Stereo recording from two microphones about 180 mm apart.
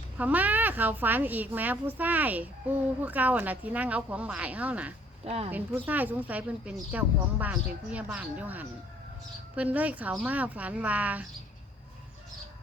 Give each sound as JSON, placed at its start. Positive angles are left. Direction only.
{"t": 0.2, "sound": "a woman's voice", "side_deg": -10}
{"t": 5.2, "sound": "speech", "side_deg": -35}
{"t": 5.5, "sound": "a woman's voice", "side_deg": -10}